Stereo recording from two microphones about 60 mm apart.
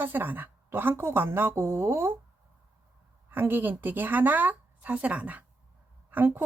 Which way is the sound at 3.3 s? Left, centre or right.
Right.